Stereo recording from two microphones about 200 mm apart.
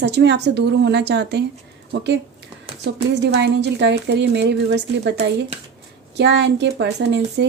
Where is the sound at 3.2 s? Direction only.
60° right (ahead or behind).